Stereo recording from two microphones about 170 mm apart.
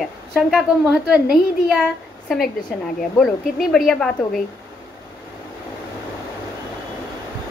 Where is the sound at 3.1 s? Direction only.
5° left (ahead or behind).